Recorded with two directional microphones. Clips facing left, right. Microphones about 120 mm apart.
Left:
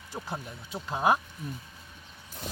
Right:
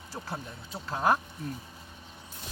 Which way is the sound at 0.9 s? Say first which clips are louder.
Left 1 dB; 15° left (ahead or behind).